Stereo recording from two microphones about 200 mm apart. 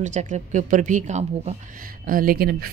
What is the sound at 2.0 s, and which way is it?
Speech, 45° right (ahead or behind).